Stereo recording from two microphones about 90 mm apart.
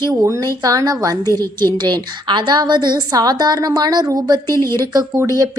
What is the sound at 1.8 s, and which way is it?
A woman's voice, 55° right (ahead or behind).